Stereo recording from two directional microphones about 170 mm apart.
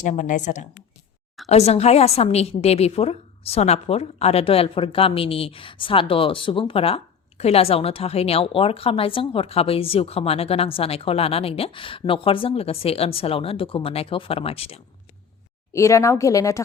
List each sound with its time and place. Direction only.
0.0 s a woman's voice: 45° left (ahead or behind)
15.7 s speech: 20° left (ahead or behind)